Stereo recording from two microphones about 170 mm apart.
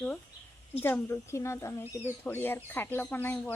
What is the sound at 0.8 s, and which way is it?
A woman's voice, 15° left (ahead or behind).